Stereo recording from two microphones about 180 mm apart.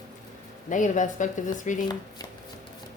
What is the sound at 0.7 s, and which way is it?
A woman's voice, 45° left (ahead or behind).